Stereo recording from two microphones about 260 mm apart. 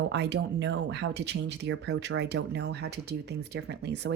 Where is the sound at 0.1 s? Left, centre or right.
Right.